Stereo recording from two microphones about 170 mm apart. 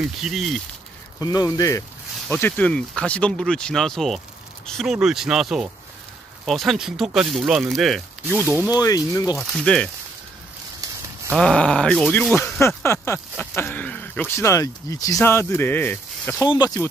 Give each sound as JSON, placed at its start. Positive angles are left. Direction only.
{"t": 0.0, "sound": "speech", "side_deg": 0}
{"t": 1.2, "sound": "speech", "side_deg": 20}
{"t": 2.2, "sound": "speech", "side_deg": 10}
{"t": 8.7, "sound": "speech", "side_deg": 20}
{"t": 9.4, "sound": "speech", "side_deg": 5}
{"t": 11.3, "sound": "speech", "side_deg": 5}